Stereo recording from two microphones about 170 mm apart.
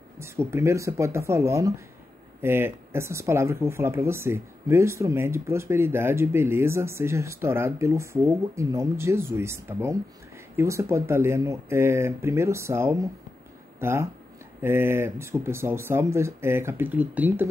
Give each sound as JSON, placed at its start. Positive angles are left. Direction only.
{"t": 0.2, "sound": "speech", "side_deg": -15}